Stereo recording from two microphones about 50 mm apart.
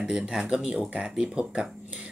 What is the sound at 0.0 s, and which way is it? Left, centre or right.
Speech, centre.